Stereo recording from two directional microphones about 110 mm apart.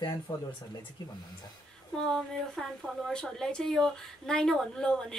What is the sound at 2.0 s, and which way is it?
A woman's voice, 5° left (ahead or behind).